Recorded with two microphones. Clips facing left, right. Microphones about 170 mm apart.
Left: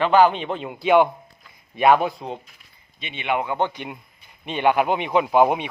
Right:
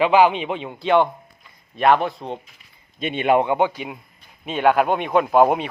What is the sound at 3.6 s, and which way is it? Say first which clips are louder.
Speech: right 3 dB; 5° right (ahead or behind).